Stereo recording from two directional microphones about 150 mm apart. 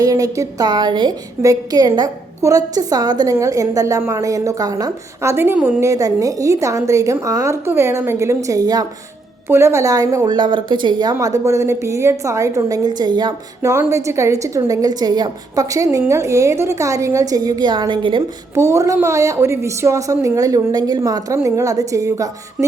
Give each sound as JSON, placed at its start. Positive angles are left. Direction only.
{"t": 0.0, "sound": "a woman's voice", "side_deg": -25}
{"t": 13.6, "sound": "a woman's voice", "side_deg": -20}
{"t": 18.5, "sound": "a woman's voice", "side_deg": -20}